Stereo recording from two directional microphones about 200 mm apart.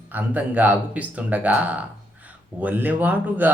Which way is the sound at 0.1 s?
10° right (ahead or behind).